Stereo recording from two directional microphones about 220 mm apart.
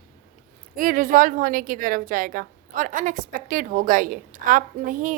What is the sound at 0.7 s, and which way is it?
A woman's voice, 40° right (ahead or behind).